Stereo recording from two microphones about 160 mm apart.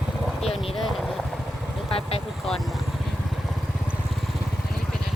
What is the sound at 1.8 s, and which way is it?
Vehicle, 35° left (ahead or behind).